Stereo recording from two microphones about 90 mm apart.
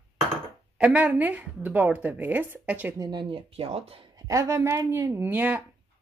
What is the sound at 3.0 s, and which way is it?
Speech, 55° right (ahead or behind).